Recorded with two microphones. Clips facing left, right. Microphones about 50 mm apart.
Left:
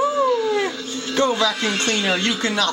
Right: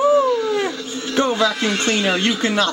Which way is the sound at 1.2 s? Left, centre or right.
Right.